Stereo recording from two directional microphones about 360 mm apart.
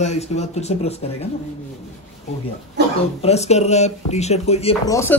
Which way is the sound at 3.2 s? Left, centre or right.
Centre.